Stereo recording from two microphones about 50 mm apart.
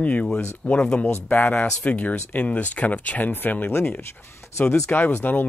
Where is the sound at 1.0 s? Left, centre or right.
Left.